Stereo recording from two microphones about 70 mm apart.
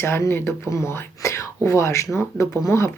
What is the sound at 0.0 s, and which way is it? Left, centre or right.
Speech, left.